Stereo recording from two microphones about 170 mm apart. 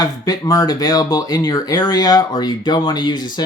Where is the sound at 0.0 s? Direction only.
20° left (ahead or behind).